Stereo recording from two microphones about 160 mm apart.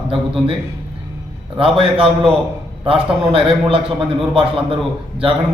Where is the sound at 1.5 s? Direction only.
35° right (ahead or behind).